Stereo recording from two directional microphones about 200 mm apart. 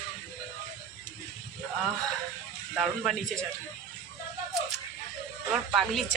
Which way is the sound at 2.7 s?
Centre (ahead or behind).